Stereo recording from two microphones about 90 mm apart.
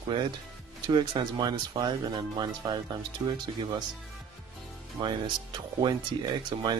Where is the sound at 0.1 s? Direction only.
70° right (ahead or behind).